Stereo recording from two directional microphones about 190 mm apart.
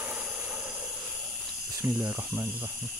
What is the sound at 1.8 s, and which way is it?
Speech, 15° right (ahead or behind).